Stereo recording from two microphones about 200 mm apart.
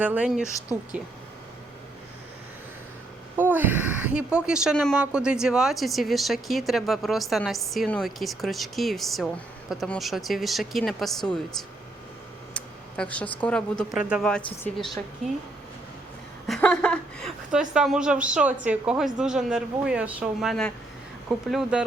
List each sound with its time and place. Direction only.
0.0 s a woman's voice: 5° right (ahead or behind)
0.4 s speech: 15° left (ahead or behind)
3.3 s a woman's voice: 10° right (ahead or behind)
12.5 s speech: 5° left (ahead or behind)
16.5 s speech: 5° left (ahead or behind)